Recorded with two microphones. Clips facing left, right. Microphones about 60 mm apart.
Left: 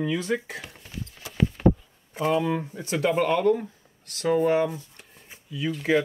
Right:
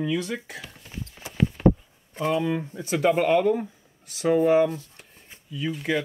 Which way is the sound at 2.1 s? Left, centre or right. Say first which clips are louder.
Left 1 dB; centre.